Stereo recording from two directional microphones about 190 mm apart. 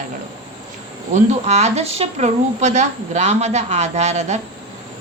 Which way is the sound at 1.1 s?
35° right (ahead or behind).